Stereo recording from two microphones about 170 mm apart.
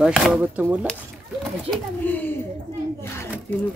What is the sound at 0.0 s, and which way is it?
Speech, centre (ahead or behind).